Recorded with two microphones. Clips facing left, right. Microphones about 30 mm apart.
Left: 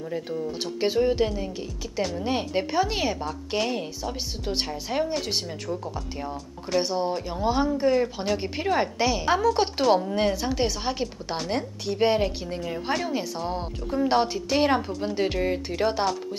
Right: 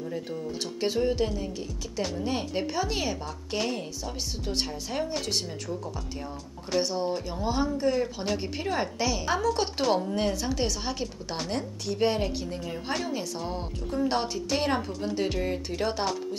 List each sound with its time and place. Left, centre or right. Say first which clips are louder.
0.7 s a woman's voice: left 4 dB; centre
6.8 s a woman's voice: left 2 dB; centre